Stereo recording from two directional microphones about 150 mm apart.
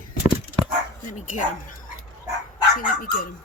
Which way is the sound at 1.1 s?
55° left (ahead or behind).